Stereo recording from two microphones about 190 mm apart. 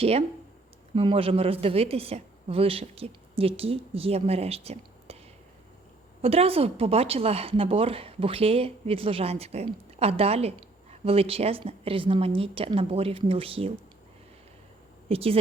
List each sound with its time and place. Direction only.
0.0 s speech: 30° right (ahead or behind)
6.2 s a woman's voice: 30° right (ahead or behind)
15.1 s speech: 30° right (ahead or behind)